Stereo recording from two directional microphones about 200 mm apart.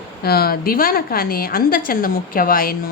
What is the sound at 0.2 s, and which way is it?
A woman's voice, 50° left (ahead or behind).